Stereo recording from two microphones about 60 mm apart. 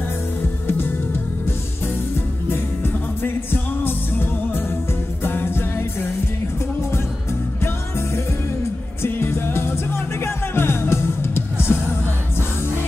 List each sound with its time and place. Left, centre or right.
0.7 s music: left
2.5 s music: left
9.0 s music: left